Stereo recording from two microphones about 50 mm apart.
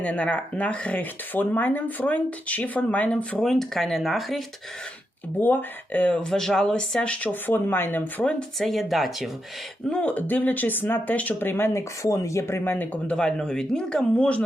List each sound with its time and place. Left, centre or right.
0.0 s speech: left
3.4 s speech: centre
5.4 s speech: left
6.1 s speech: centre
7.4 s speech: left
8.2 s speech: left
8.5 s speech: centre
10.1 s speech: left
11.3 s speech: left
11.7 s speech: left
12.7 s speech: left
13.1 s speech: centre